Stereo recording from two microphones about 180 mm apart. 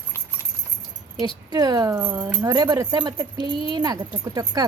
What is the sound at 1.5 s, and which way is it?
Speech, 20° right (ahead or behind).